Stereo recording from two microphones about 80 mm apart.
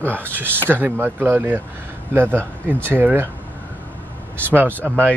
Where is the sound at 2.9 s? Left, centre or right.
Right.